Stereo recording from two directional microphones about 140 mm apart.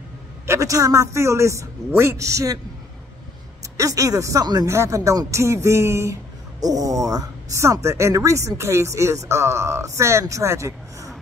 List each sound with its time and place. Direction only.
0.5 s a woman's voice: 20° right (ahead or behind)
3.7 s a woman's voice: 25° right (ahead or behind)